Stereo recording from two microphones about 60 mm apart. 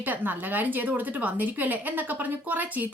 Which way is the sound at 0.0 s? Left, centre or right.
Right.